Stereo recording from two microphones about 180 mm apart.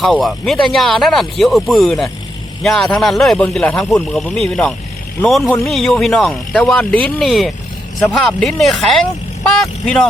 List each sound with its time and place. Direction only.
0.0 s speech: centre (ahead or behind)
5.4 s speech: 15° left (ahead or behind)
5.6 s speech: centre (ahead or behind)